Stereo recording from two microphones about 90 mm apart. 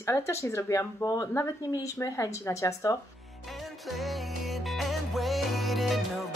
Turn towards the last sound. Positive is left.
turn(degrees=0)  # may be behind; listen again after turning